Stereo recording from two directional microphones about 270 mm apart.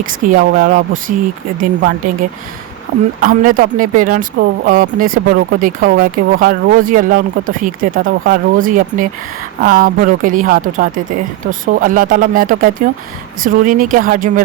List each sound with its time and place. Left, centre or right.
0.0 s speech: right
3.2 s speech: right